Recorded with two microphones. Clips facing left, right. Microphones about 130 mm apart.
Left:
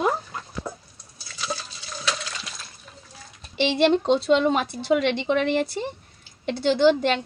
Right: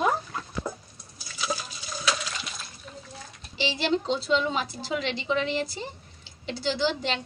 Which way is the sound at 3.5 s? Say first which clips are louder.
Left 7 dB; 60° left (ahead or behind).